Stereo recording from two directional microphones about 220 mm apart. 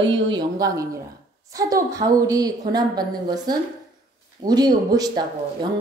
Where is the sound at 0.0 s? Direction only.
20° right (ahead or behind).